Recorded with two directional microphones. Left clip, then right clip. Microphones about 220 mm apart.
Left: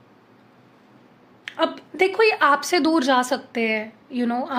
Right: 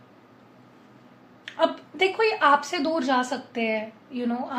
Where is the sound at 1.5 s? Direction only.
50° left (ahead or behind).